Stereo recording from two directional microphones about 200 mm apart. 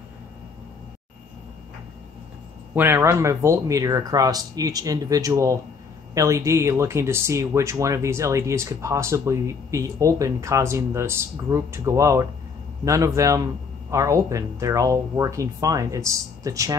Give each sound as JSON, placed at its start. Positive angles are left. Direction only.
{"t": 2.7, "sound": "speech", "side_deg": -10}